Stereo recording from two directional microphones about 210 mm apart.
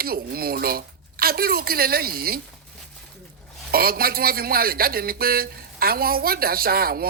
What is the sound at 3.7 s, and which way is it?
Speech, 45° right (ahead or behind).